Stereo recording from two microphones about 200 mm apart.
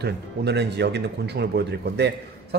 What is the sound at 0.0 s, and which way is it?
Speech, 55° right (ahead or behind).